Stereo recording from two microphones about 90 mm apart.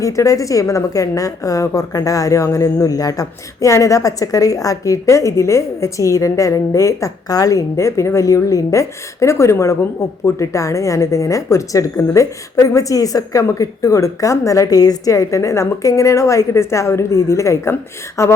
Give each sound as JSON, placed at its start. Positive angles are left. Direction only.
{"t": 0.0, "sound": "a woman's voice", "side_deg": 35}